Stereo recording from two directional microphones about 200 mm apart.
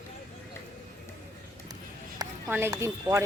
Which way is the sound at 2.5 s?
15° right (ahead or behind).